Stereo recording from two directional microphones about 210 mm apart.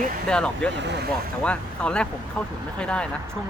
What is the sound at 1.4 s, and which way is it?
Speech, 5° left (ahead or behind).